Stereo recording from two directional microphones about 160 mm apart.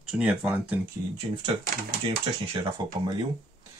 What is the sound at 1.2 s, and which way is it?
Speech, 40° right (ahead or behind).